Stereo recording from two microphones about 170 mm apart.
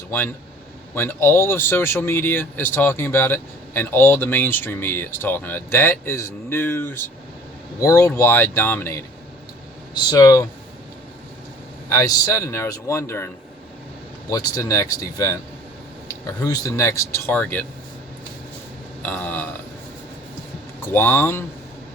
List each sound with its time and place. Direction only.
0.9 s speech: 15° left (ahead or behind)
11.9 s speech: 20° left (ahead or behind)
14.3 s speech: 20° left (ahead or behind)
19.0 s speech: 10° left (ahead or behind)
20.8 s speech: 10° left (ahead or behind)